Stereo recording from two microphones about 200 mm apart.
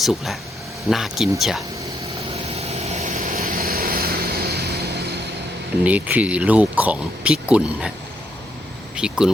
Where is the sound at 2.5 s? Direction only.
30° right (ahead or behind); by 5.0 s 55° right (ahead or behind).